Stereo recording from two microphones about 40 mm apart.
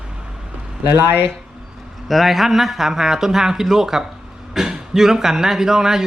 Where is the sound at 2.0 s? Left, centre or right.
Centre.